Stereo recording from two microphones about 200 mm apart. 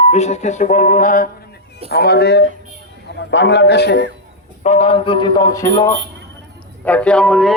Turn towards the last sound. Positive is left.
turn(degrees=0)  # may be behind; listen again after turning